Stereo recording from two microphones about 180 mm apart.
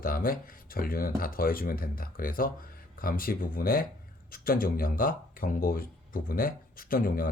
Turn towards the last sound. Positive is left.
turn(degrees=55)  # may be behind; listen again after turning